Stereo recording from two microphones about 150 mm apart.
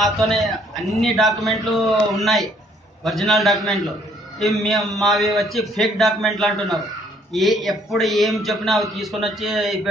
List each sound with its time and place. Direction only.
0.0 s a man's voice: centre (ahead or behind)